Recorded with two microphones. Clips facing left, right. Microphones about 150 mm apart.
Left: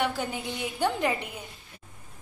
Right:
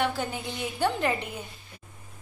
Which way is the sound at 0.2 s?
10° left (ahead or behind).